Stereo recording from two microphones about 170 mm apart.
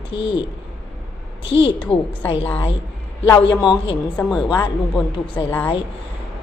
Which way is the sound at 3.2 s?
30° left (ahead or behind).